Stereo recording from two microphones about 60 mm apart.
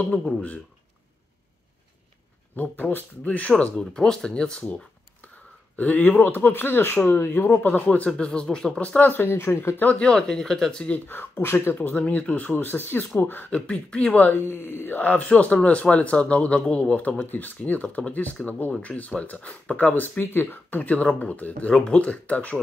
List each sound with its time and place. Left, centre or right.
0.0 s speech: centre
2.5 s speech: left
3.3 s speech: left
8.2 s speech: centre; by 9.8 s left
9.9 s speech: centre
11.1 s speech: left
11.7 s speech: left
13.5 s speech: centre
14.4 s speech: left
15.0 s speech: left
21.7 s speech: centre